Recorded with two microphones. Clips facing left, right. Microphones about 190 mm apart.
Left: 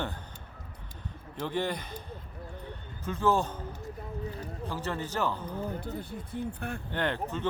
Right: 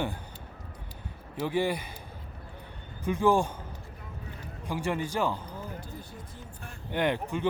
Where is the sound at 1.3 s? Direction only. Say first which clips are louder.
Right 3 dB; 10° right (ahead or behind).